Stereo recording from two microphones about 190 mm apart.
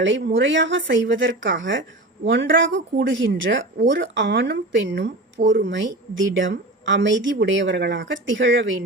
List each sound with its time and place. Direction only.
0.0 s speech: 70° right (ahead or behind)